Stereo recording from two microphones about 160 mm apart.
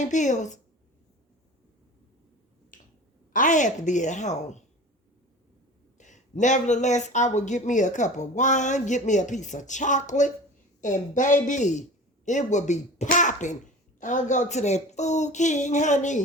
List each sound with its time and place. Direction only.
0.0 s speech: 50° left (ahead or behind)
2.7 s finger snapping: 55° left (ahead or behind)
3.3 s speech: 55° left (ahead or behind)
6.0 s speech: 50° left (ahead or behind)